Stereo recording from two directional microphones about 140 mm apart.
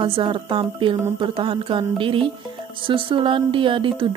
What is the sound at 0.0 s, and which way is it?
Speech, 40° right (ahead or behind).